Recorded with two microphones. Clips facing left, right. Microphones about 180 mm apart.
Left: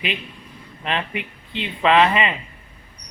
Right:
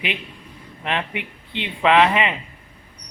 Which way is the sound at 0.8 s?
15° right (ahead or behind).